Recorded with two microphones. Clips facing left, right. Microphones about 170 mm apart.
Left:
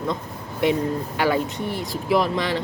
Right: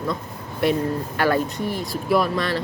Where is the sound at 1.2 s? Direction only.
15° left (ahead or behind).